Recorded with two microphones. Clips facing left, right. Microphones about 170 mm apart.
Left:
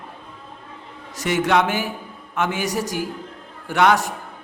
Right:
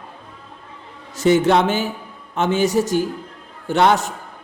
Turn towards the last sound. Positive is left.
turn(degrees=-25)  # may be behind; listen again after turning